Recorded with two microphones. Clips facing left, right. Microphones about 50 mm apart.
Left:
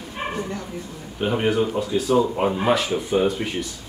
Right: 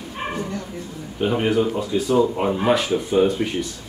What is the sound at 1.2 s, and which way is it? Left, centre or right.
Speech, centre.